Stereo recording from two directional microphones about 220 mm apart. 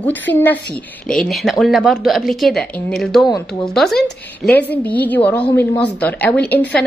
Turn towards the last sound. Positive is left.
turn(degrees=5)  # may be behind; listen again after turning